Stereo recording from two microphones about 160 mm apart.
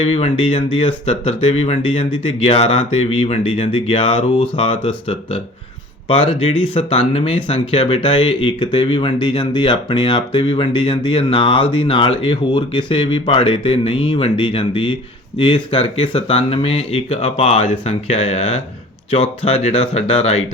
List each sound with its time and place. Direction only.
0.0 s speech: 40° left (ahead or behind)